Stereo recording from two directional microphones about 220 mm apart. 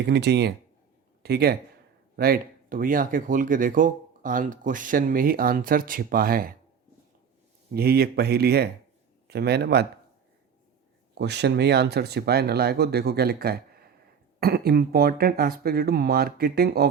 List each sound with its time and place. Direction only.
0.0 s speech: 50° right (ahead or behind)
7.7 s a man's voice: 45° right (ahead or behind)
11.2 s speech: 50° right (ahead or behind)